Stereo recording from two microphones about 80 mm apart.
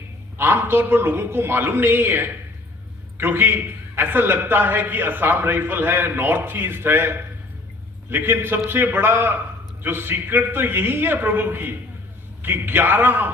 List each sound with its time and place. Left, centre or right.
0.3 s a man's voice: right